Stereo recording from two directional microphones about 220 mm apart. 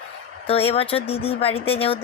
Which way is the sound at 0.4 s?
25° left (ahead or behind).